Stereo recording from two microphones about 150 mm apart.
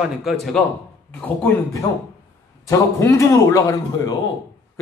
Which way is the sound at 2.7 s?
20° left (ahead or behind).